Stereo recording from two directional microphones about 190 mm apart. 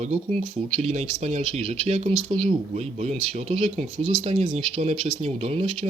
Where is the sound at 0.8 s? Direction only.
35° right (ahead or behind).